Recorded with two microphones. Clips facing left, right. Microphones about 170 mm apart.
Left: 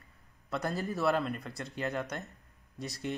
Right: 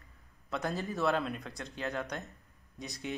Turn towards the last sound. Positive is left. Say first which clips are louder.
# left 3 dB
turn(degrees=0)  # may be behind; listen again after turning